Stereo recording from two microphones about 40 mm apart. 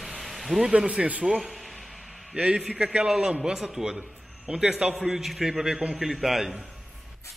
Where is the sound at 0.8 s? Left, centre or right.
Right.